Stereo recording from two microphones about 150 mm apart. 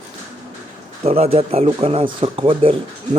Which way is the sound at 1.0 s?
45° right (ahead or behind).